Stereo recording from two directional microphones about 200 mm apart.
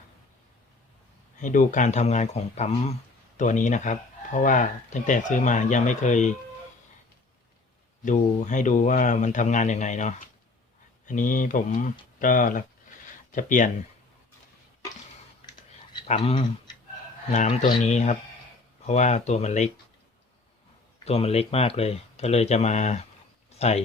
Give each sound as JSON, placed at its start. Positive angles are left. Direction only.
{"t": 1.4, "sound": "speech", "side_deg": 40}
{"t": 8.0, "sound": "speech", "side_deg": 40}
{"t": 16.0, "sound": "speech", "side_deg": 25}
{"t": 17.3, "sound": "speech", "side_deg": 35}
{"t": 21.0, "sound": "speech", "side_deg": 30}
{"t": 23.5, "sound": "a sound", "side_deg": 30}